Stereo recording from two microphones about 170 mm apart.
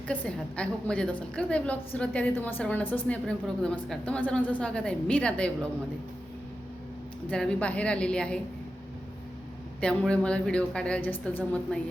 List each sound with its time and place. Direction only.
0.1 s a woman's voice: 5° left (ahead or behind)
7.3 s a woman's voice: 5° left (ahead or behind)
9.8 s a woman's voice: 5° left (ahead or behind)